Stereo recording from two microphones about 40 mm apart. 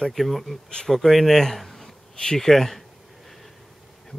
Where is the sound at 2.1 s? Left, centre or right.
Centre.